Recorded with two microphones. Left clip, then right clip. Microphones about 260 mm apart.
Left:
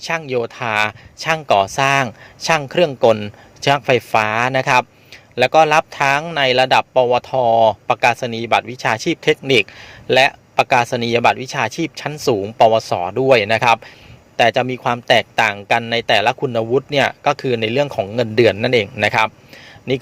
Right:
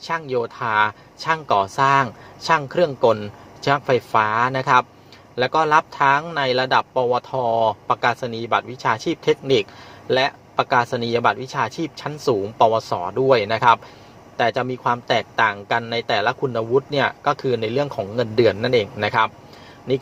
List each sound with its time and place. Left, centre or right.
0.0 s speech: left